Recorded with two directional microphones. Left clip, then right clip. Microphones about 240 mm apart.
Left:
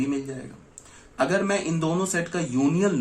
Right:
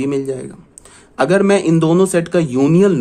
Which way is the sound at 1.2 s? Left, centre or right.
Right.